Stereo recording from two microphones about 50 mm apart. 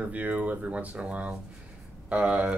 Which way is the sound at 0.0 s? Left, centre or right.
Right.